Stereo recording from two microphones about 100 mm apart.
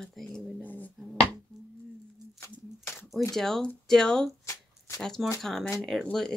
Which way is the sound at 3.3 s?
5° left (ahead or behind).